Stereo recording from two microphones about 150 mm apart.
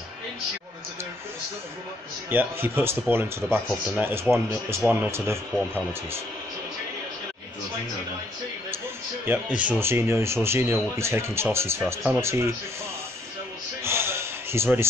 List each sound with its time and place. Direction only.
2.2 s speech: 15° right (ahead or behind)
3.6 s speech: 5° right (ahead or behind)
4.1 s speech: 15° right (ahead or behind)
9.2 s speech: 10° right (ahead or behind)
13.8 s a sound: 15° right (ahead or behind)